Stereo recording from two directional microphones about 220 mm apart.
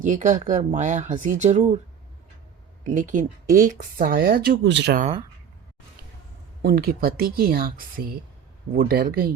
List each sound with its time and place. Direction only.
0.0 s speech: 35° right (ahead or behind)
2.8 s speech: 35° right (ahead or behind); by 4.9 s 55° right (ahead or behind)
6.6 s speech: 45° right (ahead or behind)